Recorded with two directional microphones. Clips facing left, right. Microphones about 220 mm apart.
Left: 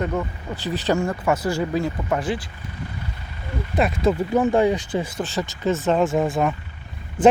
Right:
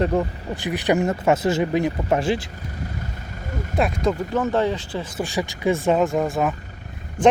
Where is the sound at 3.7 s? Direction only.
Centre (ahead or behind).